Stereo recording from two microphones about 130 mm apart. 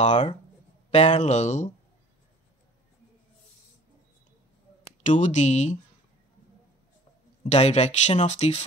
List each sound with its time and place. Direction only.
0.8 s speech: 55° left (ahead or behind)
5.0 s speech: 70° left (ahead or behind)
7.4 s speech: 55° left (ahead or behind)